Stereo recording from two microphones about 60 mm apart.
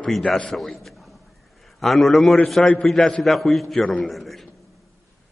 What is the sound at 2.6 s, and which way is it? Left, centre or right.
Speech, centre.